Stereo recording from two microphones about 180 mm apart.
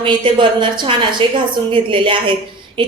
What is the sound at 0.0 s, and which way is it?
A woman's voice, 30° right (ahead or behind).